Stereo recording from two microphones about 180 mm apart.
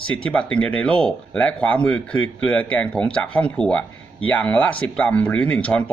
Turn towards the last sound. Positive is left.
turn(degrees=5)  # may be behind; listen again after turning